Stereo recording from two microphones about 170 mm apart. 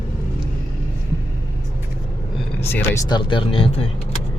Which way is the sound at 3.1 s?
30° left (ahead or behind).